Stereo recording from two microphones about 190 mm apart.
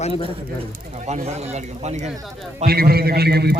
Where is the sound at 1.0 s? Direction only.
35° right (ahead or behind).